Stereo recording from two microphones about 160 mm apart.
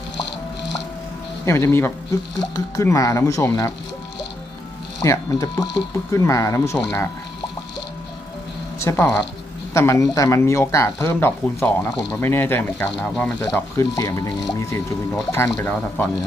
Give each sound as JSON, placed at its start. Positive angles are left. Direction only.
{"t": 1.5, "sound": "speech", "side_deg": 15}
{"t": 5.0, "sound": "speech", "side_deg": 20}
{"t": 8.8, "sound": "speech", "side_deg": 15}
{"t": 13.7, "sound": "speech", "side_deg": 20}